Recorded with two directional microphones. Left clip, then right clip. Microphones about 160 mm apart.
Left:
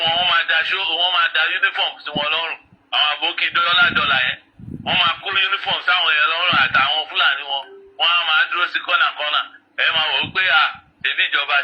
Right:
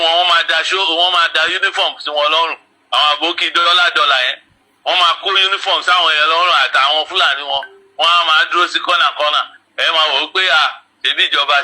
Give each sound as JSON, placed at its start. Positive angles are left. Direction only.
{"t": 0.0, "sound": "a man's voice", "side_deg": -50}